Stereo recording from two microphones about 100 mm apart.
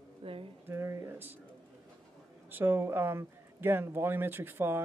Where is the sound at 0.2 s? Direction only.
65° right (ahead or behind).